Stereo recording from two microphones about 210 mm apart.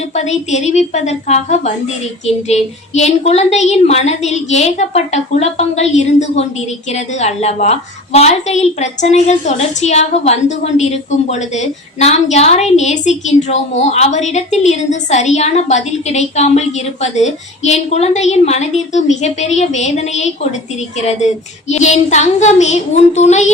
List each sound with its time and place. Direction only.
0.1 s a woman's voice: 35° left (ahead or behind)